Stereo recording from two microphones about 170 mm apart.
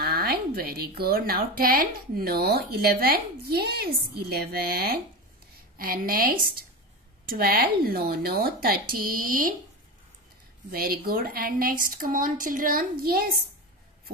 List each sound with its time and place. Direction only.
0.0 s speech: 70° right (ahead or behind)
10.7 s speech: 60° right (ahead or behind)